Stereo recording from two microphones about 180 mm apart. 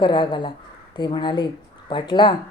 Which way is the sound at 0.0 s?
25° left (ahead or behind).